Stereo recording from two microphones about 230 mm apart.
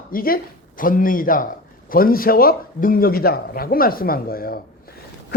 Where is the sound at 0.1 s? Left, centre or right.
Left.